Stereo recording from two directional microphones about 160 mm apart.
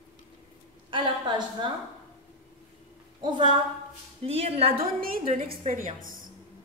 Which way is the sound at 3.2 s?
30° right (ahead or behind).